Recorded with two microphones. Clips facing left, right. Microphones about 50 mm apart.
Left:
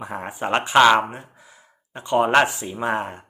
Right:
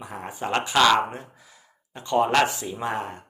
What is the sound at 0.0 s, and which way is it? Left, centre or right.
Speech, left.